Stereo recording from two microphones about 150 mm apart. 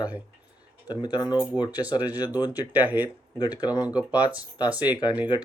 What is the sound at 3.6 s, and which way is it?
Speech, 25° left (ahead or behind).